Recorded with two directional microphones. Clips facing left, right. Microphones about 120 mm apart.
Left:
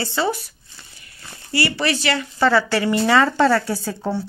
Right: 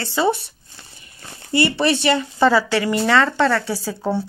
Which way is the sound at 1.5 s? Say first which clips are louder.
Right 4 dB; 25° right (ahead or behind).